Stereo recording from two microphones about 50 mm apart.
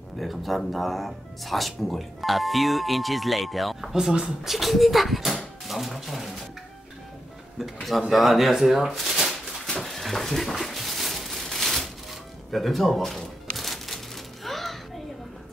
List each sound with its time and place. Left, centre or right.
0.2 s speech: centre
3.9 s speech: centre
4.5 s speech: centre
7.5 s speech: centre
8.1 s a sound: centre
12.4 s speech: centre
13.6 s music: centre